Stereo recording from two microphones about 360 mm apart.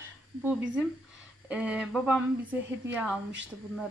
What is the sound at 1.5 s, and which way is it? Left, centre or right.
A woman's voice, centre.